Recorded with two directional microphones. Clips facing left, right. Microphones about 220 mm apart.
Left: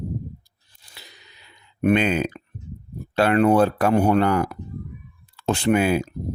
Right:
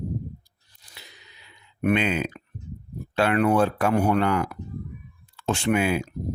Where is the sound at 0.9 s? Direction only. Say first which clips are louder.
Left 1 dB; 35° left (ahead or behind).